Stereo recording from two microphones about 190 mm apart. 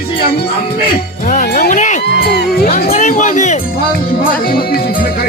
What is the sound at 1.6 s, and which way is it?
Speech, 40° left (ahead or behind).